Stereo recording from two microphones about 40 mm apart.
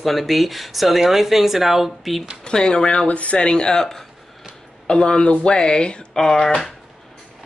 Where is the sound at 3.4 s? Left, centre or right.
Centre.